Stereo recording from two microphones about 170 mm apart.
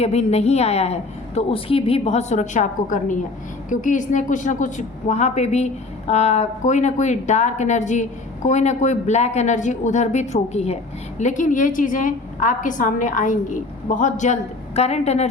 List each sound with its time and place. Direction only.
0.0 s a woman's voice: 40° left (ahead or behind)